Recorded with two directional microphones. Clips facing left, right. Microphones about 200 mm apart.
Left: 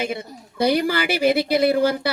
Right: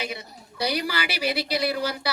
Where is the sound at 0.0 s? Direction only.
50° left (ahead or behind).